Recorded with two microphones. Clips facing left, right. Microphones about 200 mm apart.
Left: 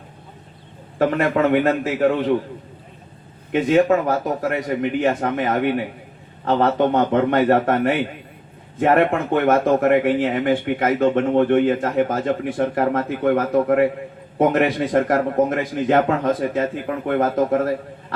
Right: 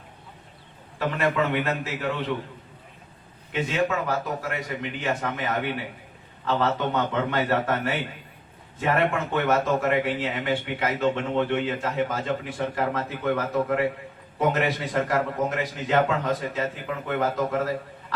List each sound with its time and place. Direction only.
0.9 s speech: 50° left (ahead or behind)
3.5 s speech: 45° left (ahead or behind)